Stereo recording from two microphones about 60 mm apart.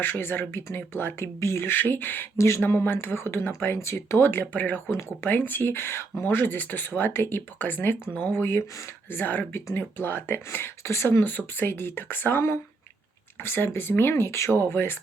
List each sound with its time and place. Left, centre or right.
0.0 s speech: left
1.4 s speech: left
1.7 s speech: left
4.5 s speech: left
4.9 s speech: left
5.3 s speech: left
14.7 s speech: left